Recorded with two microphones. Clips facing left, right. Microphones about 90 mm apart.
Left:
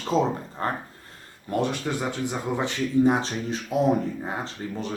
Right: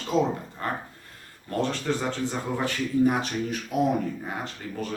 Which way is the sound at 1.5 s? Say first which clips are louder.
Left 1 dB; 15° left (ahead or behind).